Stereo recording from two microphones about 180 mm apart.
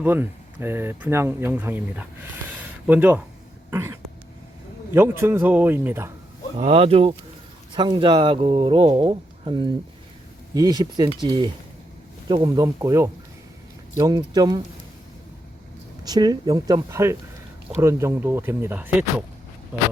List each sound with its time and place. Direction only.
0.0 s speech: 10° right (ahead or behind)
3.7 s cough: 15° right (ahead or behind)
4.9 s speech: 15° right (ahead or behind)
6.6 s speech: 35° right (ahead or behind)
16.0 s speech: 20° right (ahead or behind)